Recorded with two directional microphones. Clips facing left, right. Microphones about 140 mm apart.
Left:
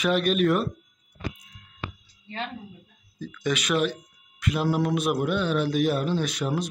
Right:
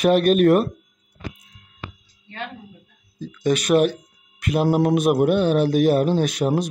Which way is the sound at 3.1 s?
30° right (ahead or behind).